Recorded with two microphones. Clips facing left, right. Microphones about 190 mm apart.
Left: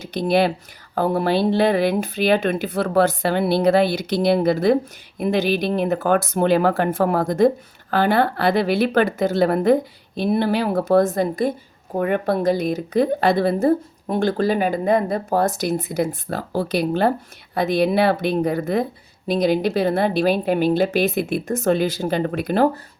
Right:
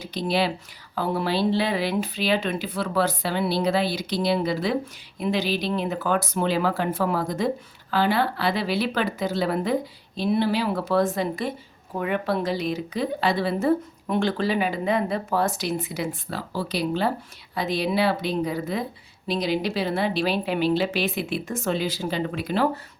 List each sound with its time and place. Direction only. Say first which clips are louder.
0.0 s speech: left 6 dB; 50° left (ahead or behind)